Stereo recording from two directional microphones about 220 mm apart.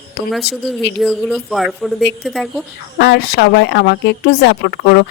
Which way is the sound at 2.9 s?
50° left (ahead or behind).